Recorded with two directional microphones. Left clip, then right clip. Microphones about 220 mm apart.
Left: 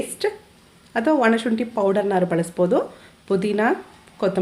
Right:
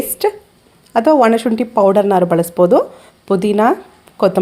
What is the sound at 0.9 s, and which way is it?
A woman's voice, 30° right (ahead or behind).